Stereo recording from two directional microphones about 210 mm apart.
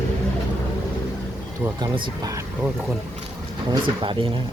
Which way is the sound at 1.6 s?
20° right (ahead or behind).